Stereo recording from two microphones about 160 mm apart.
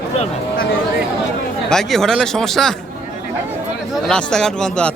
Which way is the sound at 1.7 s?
5° left (ahead or behind).